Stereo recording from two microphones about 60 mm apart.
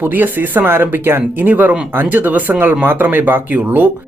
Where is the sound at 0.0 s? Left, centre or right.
Right.